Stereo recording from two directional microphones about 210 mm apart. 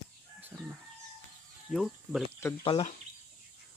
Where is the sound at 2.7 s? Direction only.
25° left (ahead or behind).